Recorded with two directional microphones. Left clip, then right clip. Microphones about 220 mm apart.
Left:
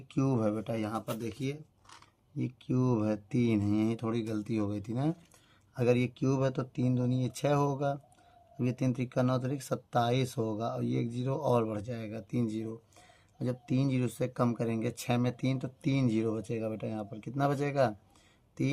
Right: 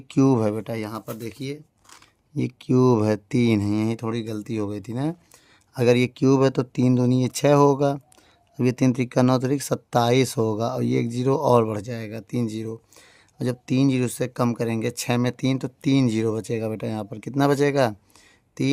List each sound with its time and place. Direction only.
0.1 s speech: 45° right (ahead or behind)